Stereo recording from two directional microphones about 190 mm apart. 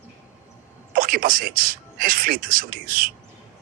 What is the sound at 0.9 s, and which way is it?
Speech, 50° right (ahead or behind).